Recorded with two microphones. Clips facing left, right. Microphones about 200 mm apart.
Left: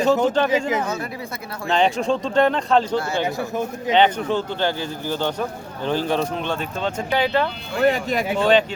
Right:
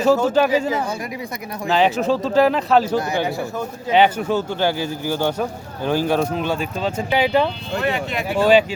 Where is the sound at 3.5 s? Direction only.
20° left (ahead or behind).